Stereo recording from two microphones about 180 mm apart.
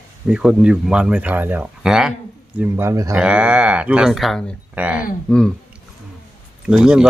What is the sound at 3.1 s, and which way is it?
Speech, 5° right (ahead or behind).